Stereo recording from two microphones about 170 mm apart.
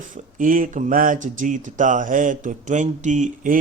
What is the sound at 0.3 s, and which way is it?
Mantra, 55° right (ahead or behind).